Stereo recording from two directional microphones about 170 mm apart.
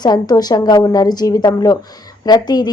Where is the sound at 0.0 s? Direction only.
25° left (ahead or behind).